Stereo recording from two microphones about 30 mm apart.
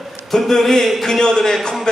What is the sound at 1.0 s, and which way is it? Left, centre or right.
Speech, centre.